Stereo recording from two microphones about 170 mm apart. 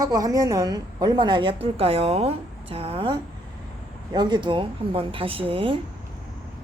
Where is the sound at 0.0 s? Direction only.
20° right (ahead or behind).